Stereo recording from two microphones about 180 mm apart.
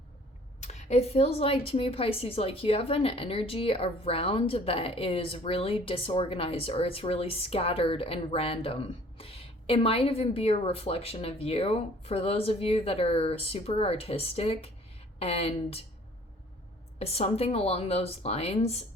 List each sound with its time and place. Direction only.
0.6 s a woman's voice: 40° left (ahead or behind)
17.0 s a woman's voice: 35° left (ahead or behind)